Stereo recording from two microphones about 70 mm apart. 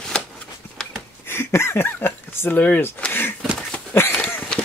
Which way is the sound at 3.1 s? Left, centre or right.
Left.